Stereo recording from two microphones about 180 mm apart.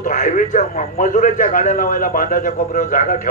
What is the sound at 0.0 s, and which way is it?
A man's voice, 45° left (ahead or behind).